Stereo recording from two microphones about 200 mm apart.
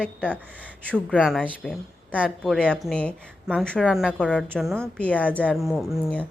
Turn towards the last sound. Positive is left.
turn(degrees=0)  # may be behind; listen again after turning